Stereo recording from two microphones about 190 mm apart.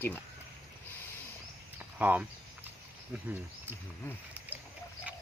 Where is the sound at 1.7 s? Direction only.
10° right (ahead or behind).